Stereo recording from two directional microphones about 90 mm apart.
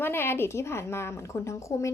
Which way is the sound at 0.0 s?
25° left (ahead or behind).